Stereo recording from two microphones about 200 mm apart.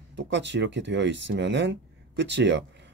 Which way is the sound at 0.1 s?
60° right (ahead or behind).